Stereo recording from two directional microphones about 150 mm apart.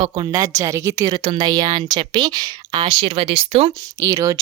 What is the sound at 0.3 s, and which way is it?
Speech, 25° right (ahead or behind).